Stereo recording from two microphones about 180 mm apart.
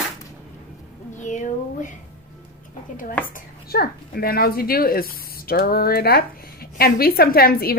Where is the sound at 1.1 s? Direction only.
40° left (ahead or behind).